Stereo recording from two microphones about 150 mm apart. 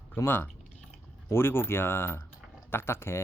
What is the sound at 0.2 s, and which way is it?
Speech, 15° left (ahead or behind).